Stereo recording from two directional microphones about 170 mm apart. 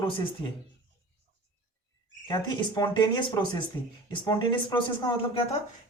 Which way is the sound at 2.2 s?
25° left (ahead or behind).